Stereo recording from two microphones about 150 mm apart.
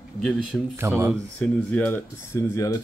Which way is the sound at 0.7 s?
15° right (ahead or behind).